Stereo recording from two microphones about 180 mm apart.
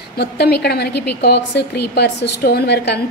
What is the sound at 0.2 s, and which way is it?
A woman's voice, 65° left (ahead or behind).